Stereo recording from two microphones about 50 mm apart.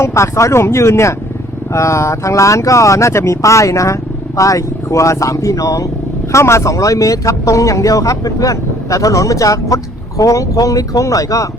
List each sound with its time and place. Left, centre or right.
0.0 s speech: left
1.7 s speech: left
6.3 s speech: left